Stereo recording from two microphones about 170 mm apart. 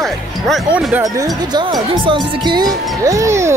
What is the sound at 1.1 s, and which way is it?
Speech, 25° right (ahead or behind).